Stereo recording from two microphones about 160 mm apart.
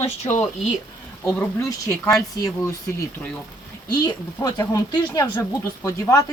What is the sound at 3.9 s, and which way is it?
Speech, 25° left (ahead or behind).